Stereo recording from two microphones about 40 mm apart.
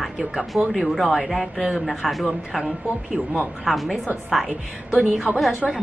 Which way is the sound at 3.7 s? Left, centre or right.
Centre.